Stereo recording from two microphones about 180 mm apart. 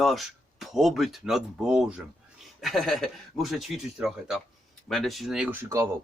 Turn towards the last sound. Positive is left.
turn(degrees=-15)  # may be behind; listen again after turning